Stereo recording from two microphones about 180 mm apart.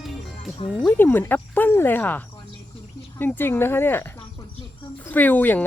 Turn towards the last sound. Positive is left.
turn(degrees=10)  # may be behind; listen again after turning